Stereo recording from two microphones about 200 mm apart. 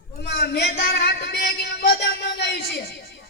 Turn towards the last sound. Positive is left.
turn(degrees=55)  # may be behind; listen again after turning